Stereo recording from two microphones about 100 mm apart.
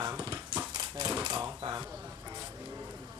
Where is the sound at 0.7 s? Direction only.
45° right (ahead or behind).